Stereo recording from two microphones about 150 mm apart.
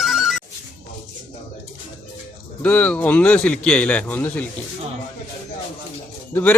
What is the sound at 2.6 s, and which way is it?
A man's voice, 10° left (ahead or behind).